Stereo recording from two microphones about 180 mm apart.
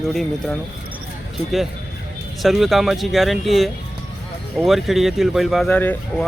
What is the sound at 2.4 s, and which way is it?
Speech, centre (ahead or behind).